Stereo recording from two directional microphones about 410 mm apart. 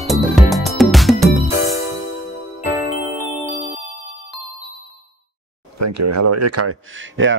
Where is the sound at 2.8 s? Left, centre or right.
Centre.